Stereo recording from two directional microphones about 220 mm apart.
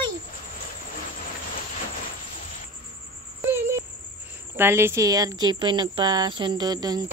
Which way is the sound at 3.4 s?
10° right (ahead or behind).